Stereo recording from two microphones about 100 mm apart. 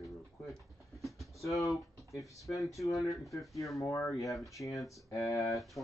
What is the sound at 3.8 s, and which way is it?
Speech, 30° left (ahead or behind).